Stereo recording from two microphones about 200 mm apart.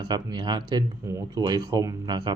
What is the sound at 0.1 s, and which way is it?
Speech, 20° right (ahead or behind).